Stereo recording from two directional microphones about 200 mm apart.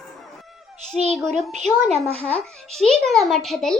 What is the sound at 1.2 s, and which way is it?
Speech, centre (ahead or behind).